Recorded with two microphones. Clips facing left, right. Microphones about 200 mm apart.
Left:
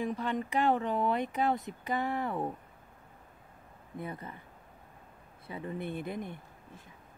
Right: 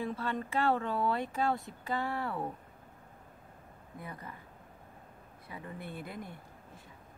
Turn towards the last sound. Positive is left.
turn(degrees=20)  # may be behind; listen again after turning